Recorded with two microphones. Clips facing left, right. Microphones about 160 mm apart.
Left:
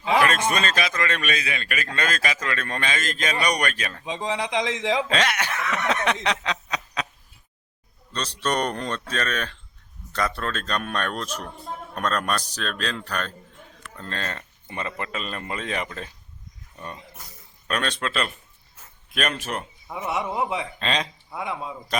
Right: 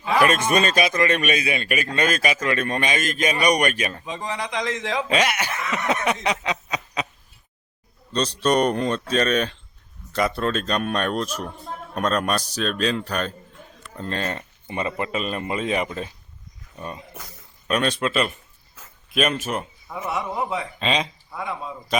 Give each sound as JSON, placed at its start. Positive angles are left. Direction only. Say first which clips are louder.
{"t": 0.5, "sound": "a man's voice", "louder": "right 5 dB", "side_deg": -15}
{"t": 4.0, "sound": "a man's voice", "louder": "left 2 dB", "side_deg": 20}
{"t": 5.0, "sound": "speech", "louder": "right 2 dB", "side_deg": -10}
{"t": 6.2, "sound": "snicker", "louder": "right 2 dB", "side_deg": -5}
{"t": 8.1, "sound": "a man's voice", "louder": "right 6 dB", "side_deg": -15}
{"t": 11.6, "sound": "a man's voice", "louder": "even", "side_deg": 0}
{"t": 11.9, "sound": "a man's voice", "louder": "right 3 dB", "side_deg": -15}
{"t": 18.8, "sound": "a sound", "louder": "right 4 dB", "side_deg": -90}
{"t": 19.1, "sound": "speech", "louder": "right 4 dB", "side_deg": -5}
{"t": 19.9, "sound": "a man's voice", "louder": "even", "side_deg": 20}
{"t": 20.7, "sound": "speech", "louder": "right 6 dB", "side_deg": -5}
{"t": 21.2, "sound": "speech", "louder": "even", "side_deg": 20}